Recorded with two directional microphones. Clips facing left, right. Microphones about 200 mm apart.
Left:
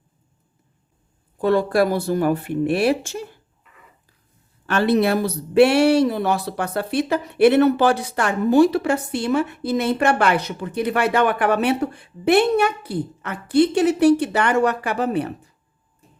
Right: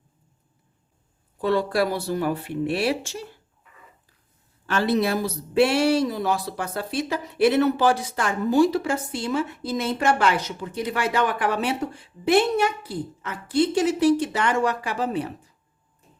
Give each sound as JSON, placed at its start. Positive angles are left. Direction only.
{"t": 1.4, "sound": "speech", "side_deg": 50}
{"t": 4.6, "sound": "speech", "side_deg": 60}